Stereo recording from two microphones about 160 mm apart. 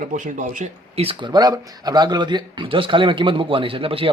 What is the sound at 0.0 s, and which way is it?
Speech, 50° right (ahead or behind).